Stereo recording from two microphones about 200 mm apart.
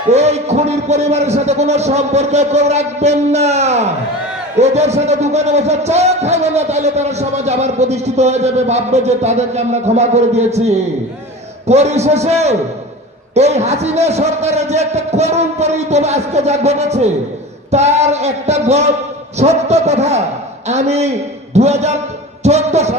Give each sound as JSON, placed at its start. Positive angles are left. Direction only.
{"t": 0.1, "sound": "a man's voice", "side_deg": -35}